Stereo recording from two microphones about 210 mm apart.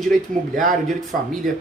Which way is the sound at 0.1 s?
40° right (ahead or behind).